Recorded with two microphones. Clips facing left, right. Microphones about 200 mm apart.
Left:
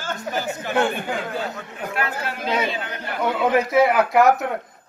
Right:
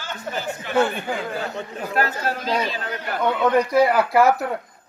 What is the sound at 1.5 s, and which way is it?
A man's voice, 40° right (ahead or behind).